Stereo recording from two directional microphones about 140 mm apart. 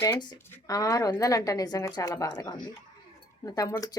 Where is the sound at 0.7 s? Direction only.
25° left (ahead or behind).